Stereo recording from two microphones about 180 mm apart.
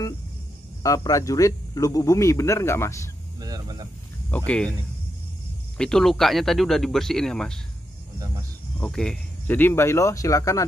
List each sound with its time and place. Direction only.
0.8 s speech: 20° left (ahead or behind)
3.3 s speech: 20° right (ahead or behind)
4.5 s speech: 5° left (ahead or behind)
5.8 s speech: 5° left (ahead or behind)
8.7 s speech: 5° left (ahead or behind)